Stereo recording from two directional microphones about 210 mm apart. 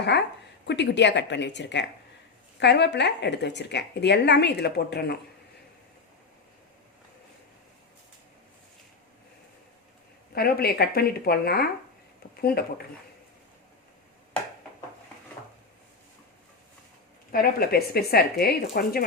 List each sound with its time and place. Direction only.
0.1 s a woman's voice: 50° left (ahead or behind)
10.3 s a woman's voice: 45° left (ahead or behind)
17.3 s a woman's voice: 45° left (ahead or behind)